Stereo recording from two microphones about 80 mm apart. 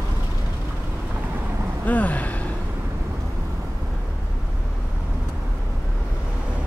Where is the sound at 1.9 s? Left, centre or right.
Centre.